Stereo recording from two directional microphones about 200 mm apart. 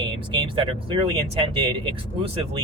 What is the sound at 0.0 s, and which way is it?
Speech, 25° right (ahead or behind).